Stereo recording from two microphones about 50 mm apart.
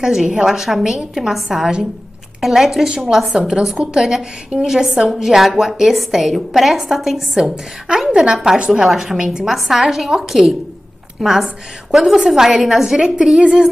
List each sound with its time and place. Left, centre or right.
0.0 s a woman's voice: centre
3.3 s a woman's voice: centre
4.0 s a woman's voice: centre